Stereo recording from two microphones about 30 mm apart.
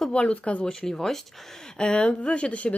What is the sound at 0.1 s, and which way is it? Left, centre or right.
Speech, left.